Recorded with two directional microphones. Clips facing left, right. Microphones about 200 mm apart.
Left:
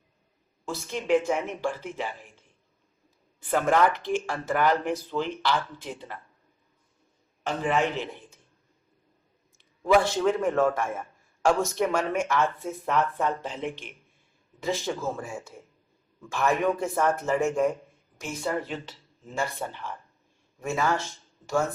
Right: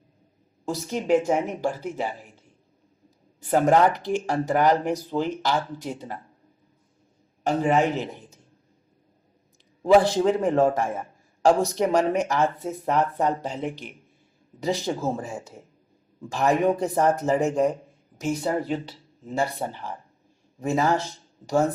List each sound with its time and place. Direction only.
0.6 s a man's voice: 40° right (ahead or behind)
3.4 s a man's voice: 40° right (ahead or behind)
7.4 s a man's voice: 40° right (ahead or behind)
9.8 s a man's voice: 35° right (ahead or behind)